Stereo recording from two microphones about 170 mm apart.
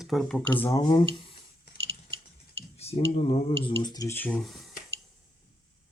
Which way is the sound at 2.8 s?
40° left (ahead or behind).